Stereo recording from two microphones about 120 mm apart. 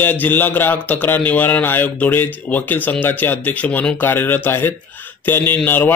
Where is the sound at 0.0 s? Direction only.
15° left (ahead or behind).